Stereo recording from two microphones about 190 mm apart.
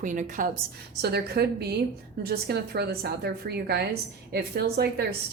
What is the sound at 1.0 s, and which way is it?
A woman's voice, 60° right (ahead or behind).